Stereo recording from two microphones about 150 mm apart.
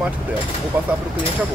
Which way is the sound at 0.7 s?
10° right (ahead or behind).